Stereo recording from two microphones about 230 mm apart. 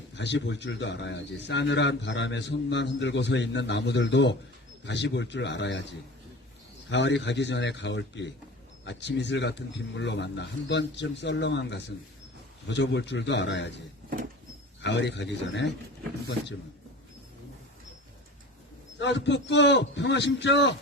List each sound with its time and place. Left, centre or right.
0.1 s a man's voice: left
6.9 s a man's voice: left
14.8 s a man's voice: left
18.9 s a man's voice: left